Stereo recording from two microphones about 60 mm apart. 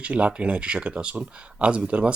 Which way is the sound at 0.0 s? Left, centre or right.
Right.